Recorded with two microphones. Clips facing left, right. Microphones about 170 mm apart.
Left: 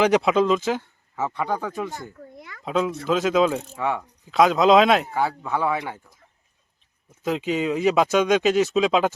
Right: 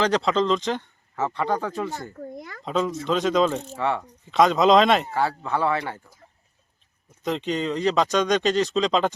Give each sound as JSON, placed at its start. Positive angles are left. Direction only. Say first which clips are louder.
{"t": 0.0, "sound": "speech", "louder": "left 3 dB", "side_deg": 10}
{"t": 2.1, "sound": "a sound", "louder": "right 6 dB", "side_deg": -40}
{"t": 2.6, "sound": "speech", "louder": "left 1 dB", "side_deg": 5}
{"t": 5.1, "sound": "speech", "louder": "even", "side_deg": 15}
{"t": 7.2, "sound": "speech", "louder": "left 2 dB", "side_deg": 5}